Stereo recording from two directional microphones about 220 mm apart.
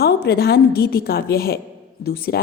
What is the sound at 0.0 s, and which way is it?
A woman's voice, 45° left (ahead or behind).